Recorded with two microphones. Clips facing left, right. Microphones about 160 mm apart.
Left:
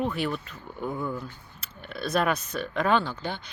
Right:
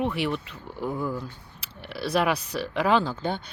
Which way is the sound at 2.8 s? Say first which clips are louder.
Right 1 dB; 15° right (ahead or behind).